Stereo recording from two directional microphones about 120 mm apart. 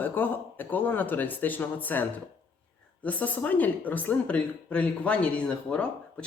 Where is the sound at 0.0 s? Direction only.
15° left (ahead or behind).